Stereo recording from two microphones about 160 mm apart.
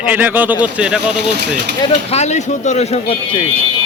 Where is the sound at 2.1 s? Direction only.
45° left (ahead or behind).